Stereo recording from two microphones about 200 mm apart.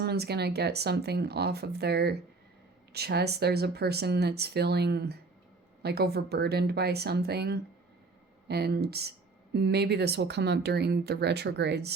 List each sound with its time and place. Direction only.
0.0 s speech: 55° right (ahead or behind)